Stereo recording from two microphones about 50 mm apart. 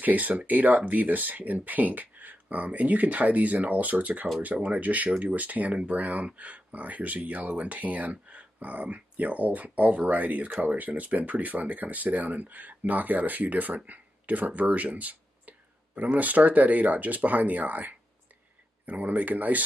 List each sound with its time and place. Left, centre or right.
0.0 s speech: right